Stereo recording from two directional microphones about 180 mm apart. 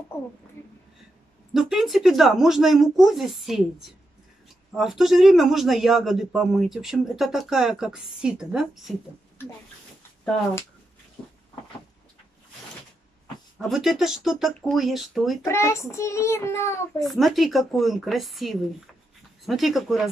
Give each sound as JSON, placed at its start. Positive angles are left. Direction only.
{"t": 1.5, "sound": "a man's voice", "side_deg": 0}
{"t": 4.7, "sound": "a man's voice", "side_deg": 0}
{"t": 13.6, "sound": "a man's voice", "side_deg": 0}
{"t": 15.4, "sound": "a child's voice", "side_deg": 15}
{"t": 17.1, "sound": "a man's voice", "side_deg": 0}